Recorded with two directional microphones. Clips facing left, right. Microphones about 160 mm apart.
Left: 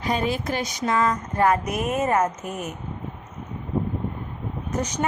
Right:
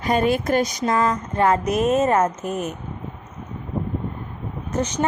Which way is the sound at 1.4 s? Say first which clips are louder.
Right 3 dB; 25° right (ahead or behind).